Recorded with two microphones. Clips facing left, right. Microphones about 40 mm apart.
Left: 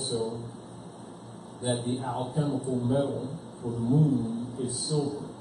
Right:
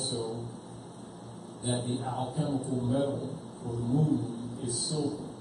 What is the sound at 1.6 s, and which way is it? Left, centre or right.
A man's voice, centre.